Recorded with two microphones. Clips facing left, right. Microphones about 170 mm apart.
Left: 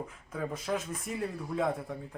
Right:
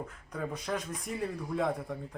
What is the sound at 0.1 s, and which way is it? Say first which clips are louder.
Speech: left 1 dB; centre (ahead or behind).